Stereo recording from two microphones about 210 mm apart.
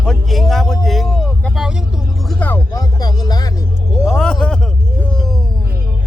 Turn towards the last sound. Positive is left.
turn(degrees=5)  # may be behind; listen again after turning